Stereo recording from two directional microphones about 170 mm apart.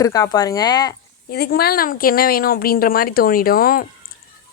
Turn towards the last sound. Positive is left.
turn(degrees=60)  # may be behind; listen again after turning